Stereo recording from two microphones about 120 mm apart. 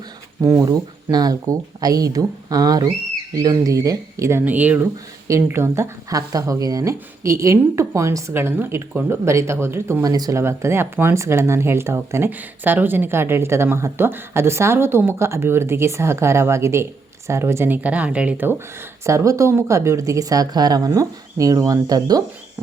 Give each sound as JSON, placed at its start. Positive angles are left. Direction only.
{"t": 0.4, "sound": "speech", "side_deg": -25}